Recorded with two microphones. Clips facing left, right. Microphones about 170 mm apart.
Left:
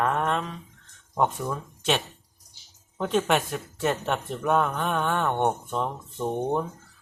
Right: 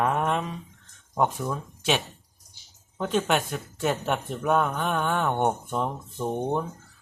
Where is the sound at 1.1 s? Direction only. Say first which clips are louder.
Even; centre (ahead or behind).